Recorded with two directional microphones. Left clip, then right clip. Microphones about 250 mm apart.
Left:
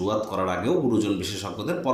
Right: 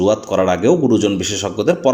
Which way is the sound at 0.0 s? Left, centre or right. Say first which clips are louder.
Right 10 dB; right.